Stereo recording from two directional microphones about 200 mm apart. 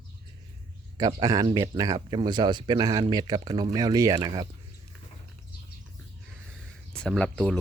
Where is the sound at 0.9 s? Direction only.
20° right (ahead or behind).